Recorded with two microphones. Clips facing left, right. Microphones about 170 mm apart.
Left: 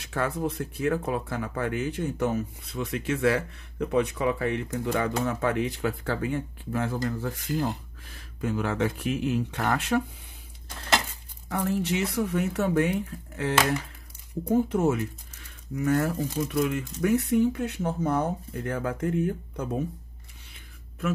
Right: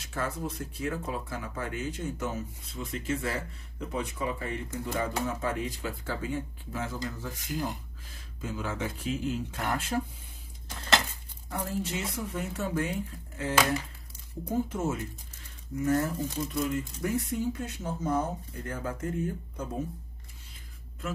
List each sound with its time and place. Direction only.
0.0 s speech: 60° left (ahead or behind)
11.4 s speech: 80° left
14.7 s speech: 65° left (ahead or behind)